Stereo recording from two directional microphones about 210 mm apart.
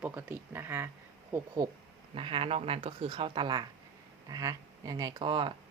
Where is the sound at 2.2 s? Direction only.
25° right (ahead or behind).